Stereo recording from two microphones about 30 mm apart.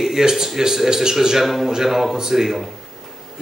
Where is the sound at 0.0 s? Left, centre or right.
Centre.